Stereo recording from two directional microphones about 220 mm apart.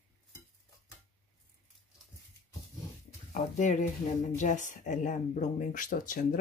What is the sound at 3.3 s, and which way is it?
Speech, 35° left (ahead or behind).